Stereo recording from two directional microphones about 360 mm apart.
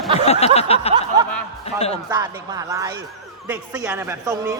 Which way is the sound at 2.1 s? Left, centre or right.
Centre.